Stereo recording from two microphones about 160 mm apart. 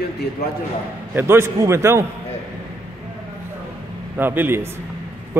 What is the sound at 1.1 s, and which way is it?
Speech, 15° right (ahead or behind).